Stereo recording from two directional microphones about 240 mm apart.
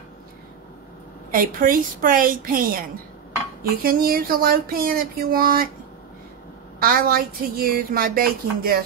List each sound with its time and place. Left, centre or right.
1.3 s speech: right
3.8 s speech: right
6.8 s speech: right